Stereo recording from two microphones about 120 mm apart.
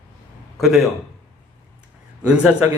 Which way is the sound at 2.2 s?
10° right (ahead or behind).